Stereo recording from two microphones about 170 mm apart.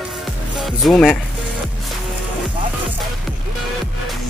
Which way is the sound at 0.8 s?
Centre (ahead or behind).